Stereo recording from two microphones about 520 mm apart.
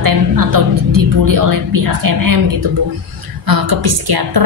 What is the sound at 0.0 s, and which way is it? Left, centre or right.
A woman's voice, right.